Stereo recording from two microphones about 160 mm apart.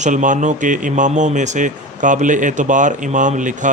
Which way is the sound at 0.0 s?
50° right (ahead or behind).